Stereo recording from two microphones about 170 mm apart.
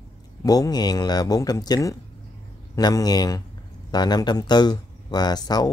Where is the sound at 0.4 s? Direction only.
20° left (ahead or behind).